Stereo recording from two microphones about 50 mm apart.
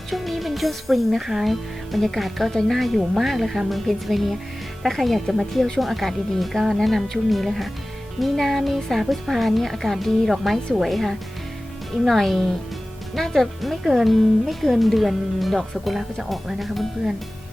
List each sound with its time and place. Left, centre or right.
0.1 s speech: centre